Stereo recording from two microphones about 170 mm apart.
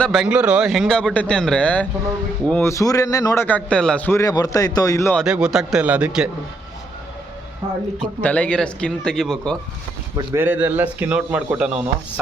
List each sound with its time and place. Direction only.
0.0 s a man's voice: centre (ahead or behind); by 5.1 s 20° left (ahead or behind)
5.1 s a man's voice: 5° right (ahead or behind)
8.0 s a man's voice: 10° left (ahead or behind)
10.2 s speech: 15° right (ahead or behind)